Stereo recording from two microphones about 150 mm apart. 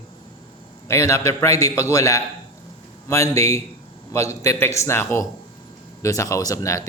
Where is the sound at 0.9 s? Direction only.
20° left (ahead or behind).